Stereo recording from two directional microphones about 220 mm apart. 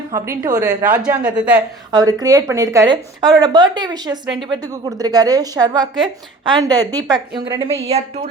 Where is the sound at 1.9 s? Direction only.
20° right (ahead or behind).